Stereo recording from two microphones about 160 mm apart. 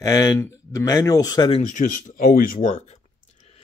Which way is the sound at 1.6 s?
55° left (ahead or behind).